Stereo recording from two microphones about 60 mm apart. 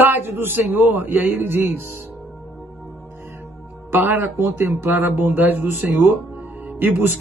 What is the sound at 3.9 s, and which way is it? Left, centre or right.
Speech, right.